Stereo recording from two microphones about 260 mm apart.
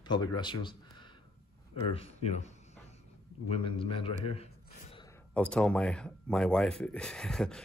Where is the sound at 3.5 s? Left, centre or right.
Left.